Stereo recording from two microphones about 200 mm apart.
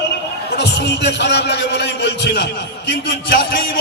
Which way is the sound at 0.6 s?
60° left (ahead or behind).